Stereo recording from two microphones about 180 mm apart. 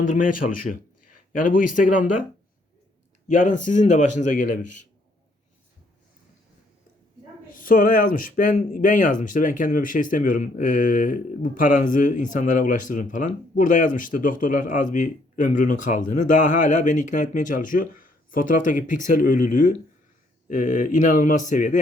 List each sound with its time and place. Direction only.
0.1 s a man's voice: 50° left (ahead or behind)
3.2 s speech: 45° left (ahead or behind)
7.5 s speech: 50° left (ahead or behind)